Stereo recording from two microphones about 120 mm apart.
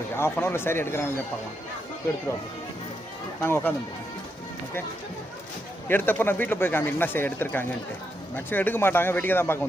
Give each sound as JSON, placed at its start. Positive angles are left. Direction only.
{"t": 0.2, "sound": "speech", "side_deg": 20}
{"t": 3.4, "sound": "speech", "side_deg": 20}
{"t": 5.9, "sound": "speech", "side_deg": 15}